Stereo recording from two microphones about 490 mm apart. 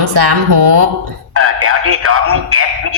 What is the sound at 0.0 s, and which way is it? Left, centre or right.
Music, right.